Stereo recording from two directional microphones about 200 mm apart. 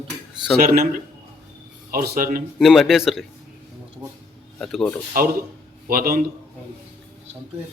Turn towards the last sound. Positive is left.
turn(degrees=-45)  # may be behind; listen again after turning